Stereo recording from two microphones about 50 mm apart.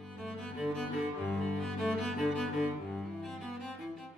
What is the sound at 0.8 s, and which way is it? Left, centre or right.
Music, centre.